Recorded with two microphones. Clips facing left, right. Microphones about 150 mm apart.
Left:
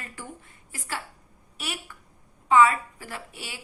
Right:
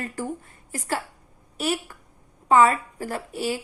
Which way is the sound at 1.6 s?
40° right (ahead or behind).